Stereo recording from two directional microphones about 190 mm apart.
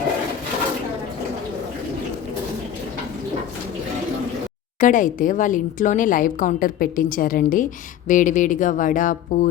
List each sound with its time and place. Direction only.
4.8 s a woman's voice: 45° left (ahead or behind)